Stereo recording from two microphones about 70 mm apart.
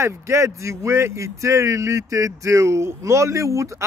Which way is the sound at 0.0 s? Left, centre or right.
Right.